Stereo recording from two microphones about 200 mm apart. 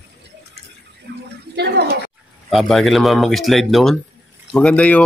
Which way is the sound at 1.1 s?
55° right (ahead or behind).